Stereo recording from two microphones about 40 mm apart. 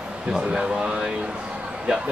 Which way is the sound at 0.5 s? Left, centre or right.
Centre.